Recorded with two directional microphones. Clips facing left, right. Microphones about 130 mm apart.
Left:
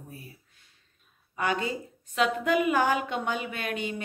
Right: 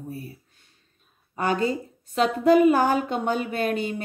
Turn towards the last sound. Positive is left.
turn(degrees=-40)  # may be behind; listen again after turning